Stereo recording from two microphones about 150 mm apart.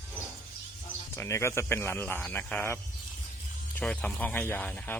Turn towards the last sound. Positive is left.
turn(degrees=10)  # may be behind; listen again after turning